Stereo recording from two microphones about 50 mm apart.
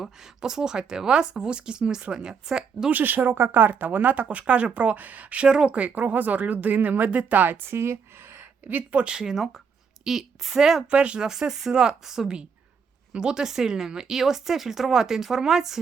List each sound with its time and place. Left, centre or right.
0.0 s speech: centre
2.9 s speech: right
5.5 s speech: centre
5.7 s speech: right
7.7 s speech: right
9.1 s speech: centre
10.8 s speech: right
11.3 s speech: centre